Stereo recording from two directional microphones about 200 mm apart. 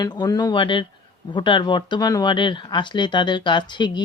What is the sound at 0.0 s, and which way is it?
Speech, 20° left (ahead or behind).